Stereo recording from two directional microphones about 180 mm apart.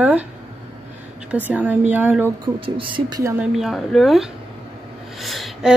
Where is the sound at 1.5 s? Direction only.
10° right (ahead or behind).